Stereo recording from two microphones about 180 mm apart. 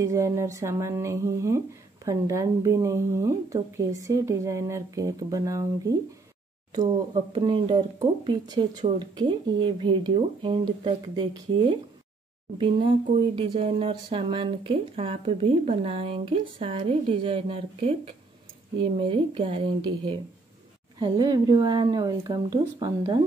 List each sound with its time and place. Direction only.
0.0 s speech: 20° right (ahead or behind)
7.3 s speech: 25° right (ahead or behind)